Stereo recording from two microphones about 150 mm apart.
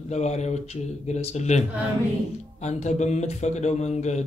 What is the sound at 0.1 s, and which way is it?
Speech, 50° left (ahead or behind).